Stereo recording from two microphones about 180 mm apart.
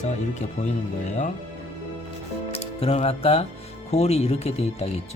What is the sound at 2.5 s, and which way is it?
Speech, 35° left (ahead or behind).